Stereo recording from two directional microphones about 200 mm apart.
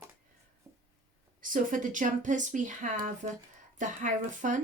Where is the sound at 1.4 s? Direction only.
40° right (ahead or behind).